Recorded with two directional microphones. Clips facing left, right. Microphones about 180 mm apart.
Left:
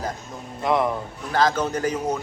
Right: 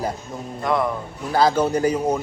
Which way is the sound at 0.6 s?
20° left (ahead or behind).